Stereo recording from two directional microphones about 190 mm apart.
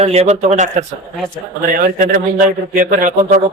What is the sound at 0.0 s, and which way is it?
A man's voice, 35° right (ahead or behind).